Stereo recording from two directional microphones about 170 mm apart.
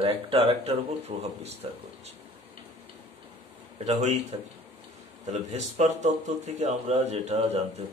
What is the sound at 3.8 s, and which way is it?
Speech, 40° right (ahead or behind).